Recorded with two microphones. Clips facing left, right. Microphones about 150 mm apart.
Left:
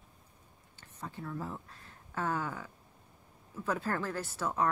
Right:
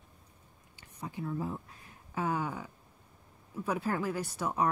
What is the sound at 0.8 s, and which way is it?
Speech, 15° right (ahead or behind).